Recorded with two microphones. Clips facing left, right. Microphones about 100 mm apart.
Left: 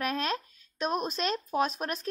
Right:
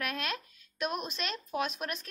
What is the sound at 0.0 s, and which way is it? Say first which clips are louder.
Speech: left 5 dB; 35° left (ahead or behind).